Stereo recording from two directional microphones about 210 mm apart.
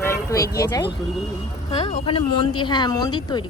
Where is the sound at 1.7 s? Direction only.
30° left (ahead or behind).